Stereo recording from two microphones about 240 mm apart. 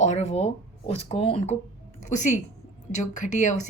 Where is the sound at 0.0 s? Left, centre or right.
Left.